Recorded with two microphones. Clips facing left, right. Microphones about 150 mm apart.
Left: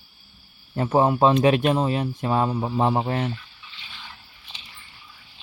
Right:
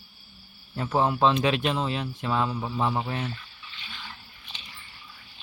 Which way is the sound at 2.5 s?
30° left (ahead or behind).